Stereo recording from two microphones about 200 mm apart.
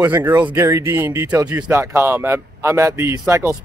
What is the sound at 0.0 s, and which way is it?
Speech, 10° right (ahead or behind).